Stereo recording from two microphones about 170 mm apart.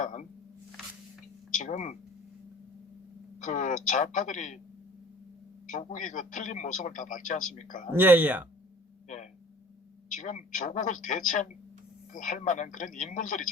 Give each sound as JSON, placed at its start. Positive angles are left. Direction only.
{"t": 0.0, "sound": "a man's voice", "side_deg": 45}
{"t": 1.5, "sound": "speech", "side_deg": 45}
{"t": 3.3, "sound": "a man's voice", "side_deg": 50}
{"t": 5.6, "sound": "a man's voice", "side_deg": 50}
{"t": 7.9, "sound": "speech", "side_deg": -10}
{"t": 9.0, "sound": "a sound", "side_deg": 45}
{"t": 10.1, "sound": "a man's voice", "side_deg": 45}